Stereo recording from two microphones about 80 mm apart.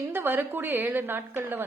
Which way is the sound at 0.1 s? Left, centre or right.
Right.